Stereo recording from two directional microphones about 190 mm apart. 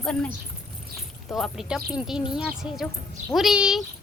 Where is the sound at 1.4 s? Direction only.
Centre (ahead or behind).